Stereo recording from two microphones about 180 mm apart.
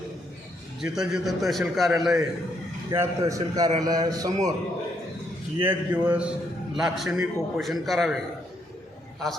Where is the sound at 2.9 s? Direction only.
15° right (ahead or behind).